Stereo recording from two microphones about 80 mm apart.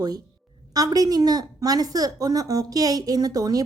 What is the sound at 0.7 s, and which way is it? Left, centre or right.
A woman's voice, right.